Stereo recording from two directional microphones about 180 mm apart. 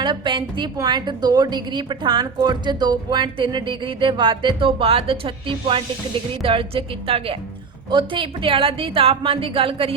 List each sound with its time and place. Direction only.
0.0 s a woman's voice: 25° right (ahead or behind)